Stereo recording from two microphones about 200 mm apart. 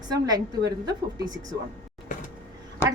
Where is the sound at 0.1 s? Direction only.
20° right (ahead or behind).